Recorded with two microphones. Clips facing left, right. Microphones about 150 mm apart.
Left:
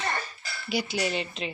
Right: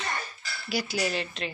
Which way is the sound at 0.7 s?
20° left (ahead or behind).